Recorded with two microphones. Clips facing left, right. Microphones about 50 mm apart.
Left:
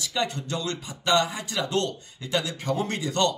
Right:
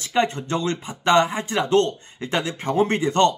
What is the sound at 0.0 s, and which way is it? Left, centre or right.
A man's voice, right.